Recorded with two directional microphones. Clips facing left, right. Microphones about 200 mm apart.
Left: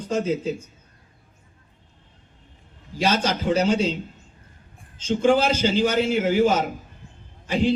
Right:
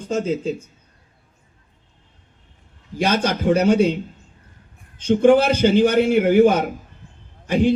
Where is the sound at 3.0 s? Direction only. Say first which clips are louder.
Right 3 dB; 55° right (ahead or behind).